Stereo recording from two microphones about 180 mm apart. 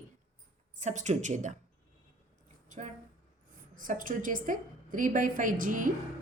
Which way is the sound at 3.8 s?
50° right (ahead or behind).